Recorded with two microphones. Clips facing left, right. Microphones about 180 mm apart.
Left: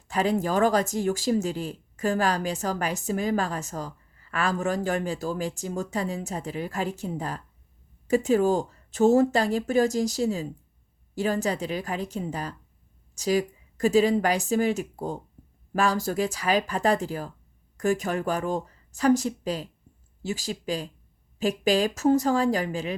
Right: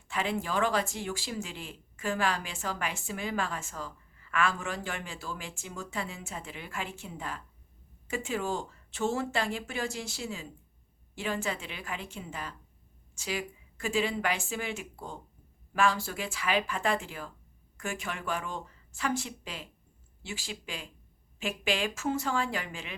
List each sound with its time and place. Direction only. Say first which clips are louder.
0.1 s speech: left 7 dB; 40° left (ahead or behind)